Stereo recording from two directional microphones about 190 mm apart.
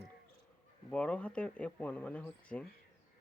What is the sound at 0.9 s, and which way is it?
Speech, 5° left (ahead or behind).